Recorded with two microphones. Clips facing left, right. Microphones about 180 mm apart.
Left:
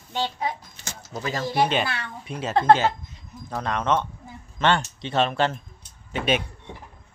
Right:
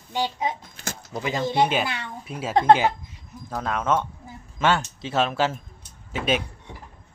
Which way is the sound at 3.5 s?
5° right (ahead or behind).